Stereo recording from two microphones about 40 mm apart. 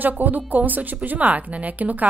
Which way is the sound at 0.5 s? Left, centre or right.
Right.